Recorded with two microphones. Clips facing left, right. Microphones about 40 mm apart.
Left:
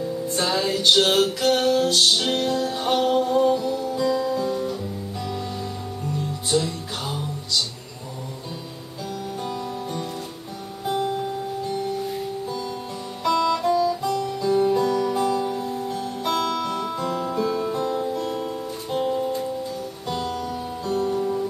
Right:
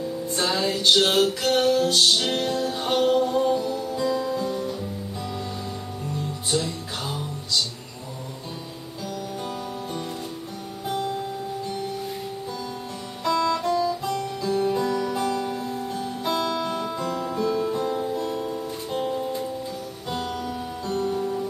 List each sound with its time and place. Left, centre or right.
0.4 s music: centre
2.5 s music: centre
6.5 s music: centre
10.9 s music: centre
13.2 s music: centre
13.8 s music: centre
14.4 s music: centre
14.7 s music: centre
16.5 s music: centre
17.2 s music: centre
17.8 s music: centre
18.2 s music: centre
20.1 s music: right
20.8 s music: centre